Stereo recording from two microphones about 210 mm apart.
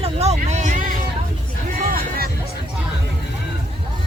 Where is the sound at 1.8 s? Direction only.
45° right (ahead or behind).